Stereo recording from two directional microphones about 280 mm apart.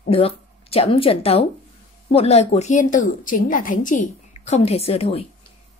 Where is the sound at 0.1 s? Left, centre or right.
Left.